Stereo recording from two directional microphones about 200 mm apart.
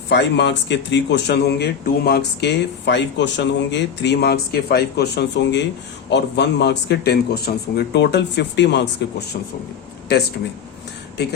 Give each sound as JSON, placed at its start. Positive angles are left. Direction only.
{"t": 0.1, "sound": "speech", "side_deg": 60}